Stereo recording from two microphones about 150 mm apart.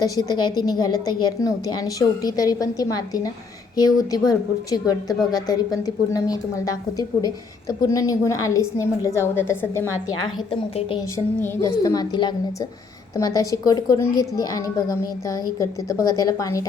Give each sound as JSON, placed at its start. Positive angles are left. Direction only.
{"t": 0.0, "sound": "a woman's voice", "side_deg": 25}
{"t": 10.5, "sound": "a woman's voice", "side_deg": 35}
{"t": 11.3, "sound": "a woman's voice", "side_deg": 20}